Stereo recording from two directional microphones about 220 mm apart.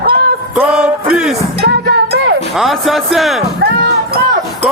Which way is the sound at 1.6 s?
50° right (ahead or behind).